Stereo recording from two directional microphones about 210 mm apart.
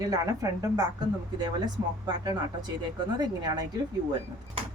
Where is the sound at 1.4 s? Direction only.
20° right (ahead or behind).